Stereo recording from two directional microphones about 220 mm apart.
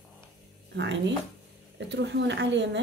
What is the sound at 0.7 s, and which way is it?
Speech, 55° right (ahead or behind).